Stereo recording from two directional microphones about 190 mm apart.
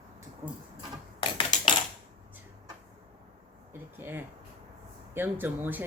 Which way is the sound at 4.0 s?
10° right (ahead or behind).